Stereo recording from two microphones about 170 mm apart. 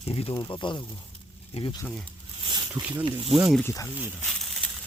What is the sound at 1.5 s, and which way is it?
Speech, 35° left (ahead or behind).